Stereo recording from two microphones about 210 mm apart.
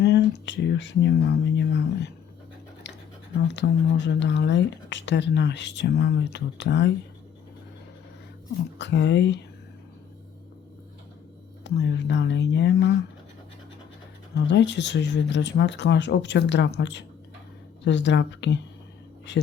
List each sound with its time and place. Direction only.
0.0 s speech: 55° left (ahead or behind)
2.8 s scratch: 55° left (ahead or behind)
3.5 s speech: 55° left (ahead or behind)
8.8 s speech: 55° left (ahead or behind)
11.6 s speech: 55° left (ahead or behind)
14.3 s speech: 55° left (ahead or behind)